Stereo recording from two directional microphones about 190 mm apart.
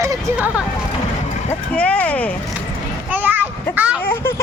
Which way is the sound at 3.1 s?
10° right (ahead or behind).